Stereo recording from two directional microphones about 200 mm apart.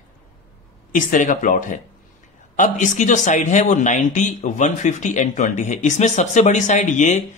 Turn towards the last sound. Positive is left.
turn(degrees=40)  # may be behind; listen again after turning